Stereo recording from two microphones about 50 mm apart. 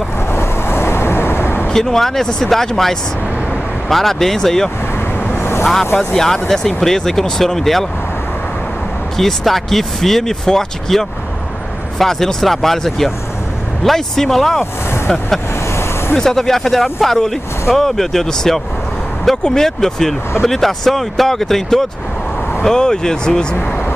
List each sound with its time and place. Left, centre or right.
0.3 s vehicle: left
1.7 s speech: centre
5.2 s vehicle: left
5.9 s speech: centre
9.1 s speech: centre
16.2 s speech: centre